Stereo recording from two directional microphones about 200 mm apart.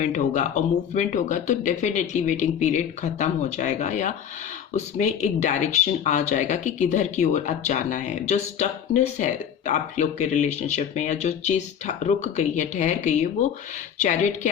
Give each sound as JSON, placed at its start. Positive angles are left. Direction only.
{"t": 0.0, "sound": "speech", "side_deg": 35}